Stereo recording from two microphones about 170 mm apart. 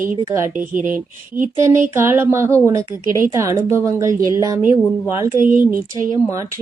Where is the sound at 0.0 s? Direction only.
50° right (ahead or behind).